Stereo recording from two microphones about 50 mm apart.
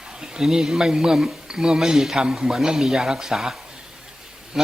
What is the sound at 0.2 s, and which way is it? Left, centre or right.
Speech, centre.